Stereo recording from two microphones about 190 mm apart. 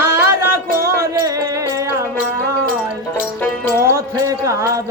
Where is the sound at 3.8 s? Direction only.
15° right (ahead or behind).